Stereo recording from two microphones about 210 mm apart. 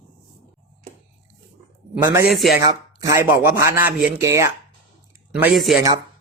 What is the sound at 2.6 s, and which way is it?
A man's voice, 15° right (ahead or behind).